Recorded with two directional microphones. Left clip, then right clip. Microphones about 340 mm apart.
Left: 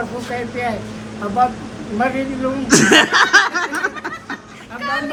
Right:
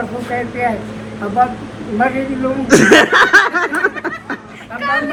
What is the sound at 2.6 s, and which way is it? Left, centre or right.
Snicker, centre.